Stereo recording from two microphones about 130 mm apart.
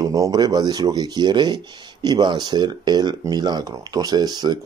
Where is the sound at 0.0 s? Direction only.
25° right (ahead or behind).